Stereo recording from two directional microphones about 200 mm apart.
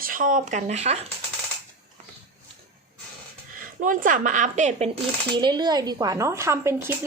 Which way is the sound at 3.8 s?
40° right (ahead or behind).